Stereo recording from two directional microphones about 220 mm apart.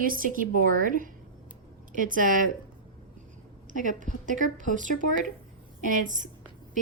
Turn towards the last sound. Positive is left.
turn(degrees=-35)  # may be behind; listen again after turning